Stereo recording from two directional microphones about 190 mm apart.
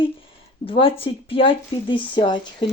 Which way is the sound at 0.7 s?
30° left (ahead or behind).